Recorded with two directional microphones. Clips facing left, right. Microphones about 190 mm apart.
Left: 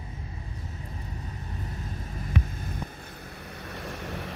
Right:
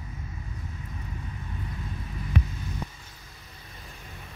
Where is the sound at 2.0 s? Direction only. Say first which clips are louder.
Right 1 dB; 50° left (ahead or behind); by 4.3 s 85° left.